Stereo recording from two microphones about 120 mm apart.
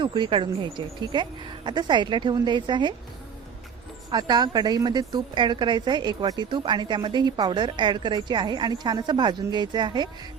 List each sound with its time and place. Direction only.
0.0 s a woman's voice: 45° right (ahead or behind)
4.1 s a woman's voice: 35° right (ahead or behind)